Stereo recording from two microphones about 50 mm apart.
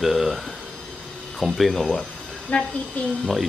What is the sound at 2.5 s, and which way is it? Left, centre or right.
Speech, left.